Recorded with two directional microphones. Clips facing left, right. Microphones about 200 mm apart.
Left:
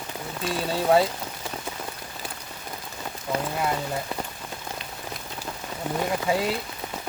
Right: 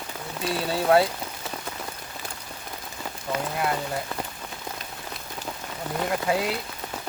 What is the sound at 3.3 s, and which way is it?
Speech, 30° left (ahead or behind).